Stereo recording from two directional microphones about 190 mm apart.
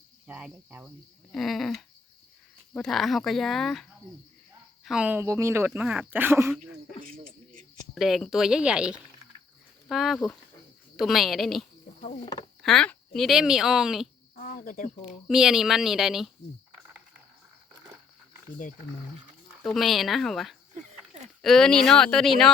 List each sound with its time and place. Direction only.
0.3 s speech: 5° right (ahead or behind)
1.3 s a sound: centre (ahead or behind)
2.7 s speech: centre (ahead or behind)
4.9 s speech: 5° right (ahead or behind)
7.0 s a sound: 45° right (ahead or behind)
7.9 s speech: centre (ahead or behind)
11.9 s speech: 40° left (ahead or behind)
12.6 s speech: 5° left (ahead or behind)
14.3 s speech: 50° left (ahead or behind)
15.0 s speech: 5° right (ahead or behind)
19.6 s speech: centre (ahead or behind)